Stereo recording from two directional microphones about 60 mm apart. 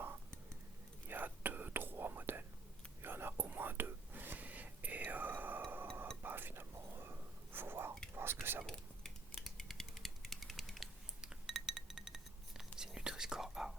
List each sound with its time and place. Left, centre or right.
1.0 s whispering: right
8.6 s cutlery: centre
11.2 s chink: centre